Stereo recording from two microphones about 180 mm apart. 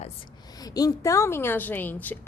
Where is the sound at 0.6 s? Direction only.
20° left (ahead or behind).